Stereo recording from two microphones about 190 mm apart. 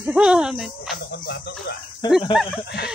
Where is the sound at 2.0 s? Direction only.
20° left (ahead or behind).